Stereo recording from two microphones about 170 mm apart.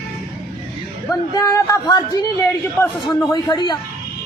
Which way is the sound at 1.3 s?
20° left (ahead or behind).